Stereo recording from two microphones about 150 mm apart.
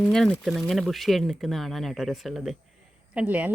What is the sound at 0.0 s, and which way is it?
A woman's voice, 5° left (ahead or behind).